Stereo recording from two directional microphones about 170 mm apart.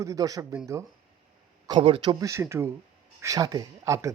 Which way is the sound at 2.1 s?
15° right (ahead or behind).